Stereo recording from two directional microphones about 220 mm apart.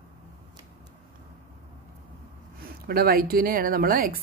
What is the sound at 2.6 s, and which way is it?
A woman's voice, 45° right (ahead or behind).